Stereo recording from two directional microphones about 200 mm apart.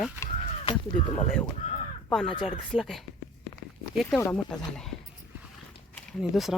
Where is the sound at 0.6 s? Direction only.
25° left (ahead or behind).